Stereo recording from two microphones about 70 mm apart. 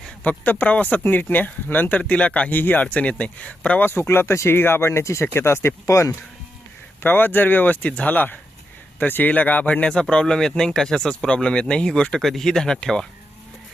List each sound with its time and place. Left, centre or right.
0.2 s speech: left
3.8 s speech: left
5.9 s speech: left
7.0 s speech: left; by 13.1 s centre